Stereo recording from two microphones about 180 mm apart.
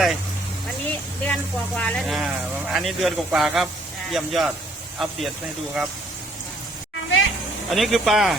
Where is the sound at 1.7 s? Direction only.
5° left (ahead or behind).